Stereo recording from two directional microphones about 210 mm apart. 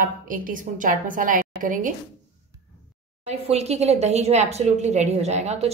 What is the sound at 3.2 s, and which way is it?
A woman's voice, 30° right (ahead or behind).